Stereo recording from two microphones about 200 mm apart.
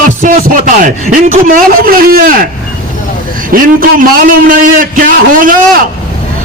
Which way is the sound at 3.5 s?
45° right (ahead or behind).